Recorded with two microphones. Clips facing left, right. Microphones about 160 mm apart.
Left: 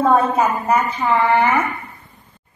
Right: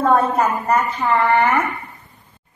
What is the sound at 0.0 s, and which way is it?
A woman's voice, 5° left (ahead or behind).